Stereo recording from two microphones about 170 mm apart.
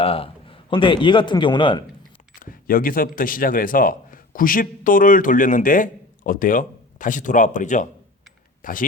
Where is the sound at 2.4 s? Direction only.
55° left (ahead or behind).